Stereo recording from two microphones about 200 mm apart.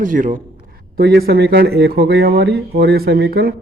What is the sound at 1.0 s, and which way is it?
Speech, 50° right (ahead or behind).